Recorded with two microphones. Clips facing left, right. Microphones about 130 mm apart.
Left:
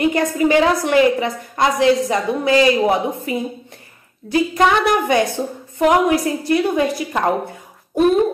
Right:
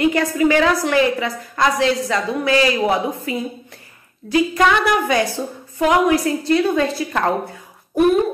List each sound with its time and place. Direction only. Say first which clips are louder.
0.0 s a woman's voice: even; 20° left (ahead or behind)